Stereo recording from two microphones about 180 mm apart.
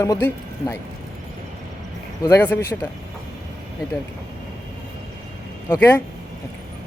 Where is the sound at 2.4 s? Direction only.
15° left (ahead or behind).